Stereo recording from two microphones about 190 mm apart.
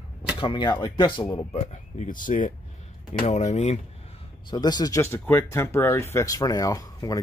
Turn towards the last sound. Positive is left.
turn(degrees=20)  # may be behind; listen again after turning